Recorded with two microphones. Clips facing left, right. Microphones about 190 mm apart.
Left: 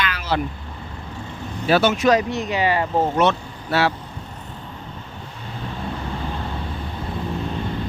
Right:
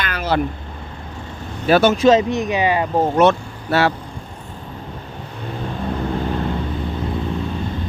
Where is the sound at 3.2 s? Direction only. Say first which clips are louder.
Right 5 dB; 50° right (ahead or behind).